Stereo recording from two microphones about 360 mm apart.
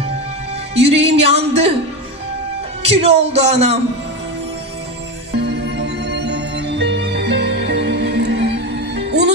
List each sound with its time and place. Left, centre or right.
0.7 s speech: centre
2.8 s speech: centre
5.3 s music: right